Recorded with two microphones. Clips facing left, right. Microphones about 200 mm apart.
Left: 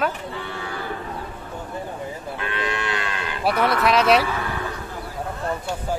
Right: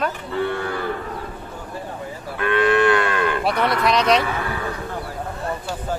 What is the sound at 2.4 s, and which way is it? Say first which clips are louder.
Moo: right 12 dB; 55° right (ahead or behind).